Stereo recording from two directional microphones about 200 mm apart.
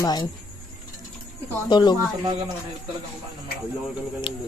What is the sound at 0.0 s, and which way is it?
Speech, 20° left (ahead or behind).